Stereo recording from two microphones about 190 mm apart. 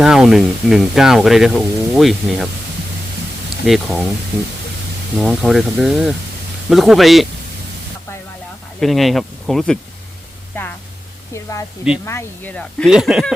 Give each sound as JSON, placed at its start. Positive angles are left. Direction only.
{"t": 0.0, "sound": "speech", "side_deg": -5}
{"t": 3.7, "sound": "speech", "side_deg": -5}
{"t": 5.1, "sound": "speech", "side_deg": -5}
{"t": 8.8, "sound": "speech", "side_deg": 0}
{"t": 12.0, "sound": "speech", "side_deg": 10}
{"t": 12.9, "sound": "speech", "side_deg": -5}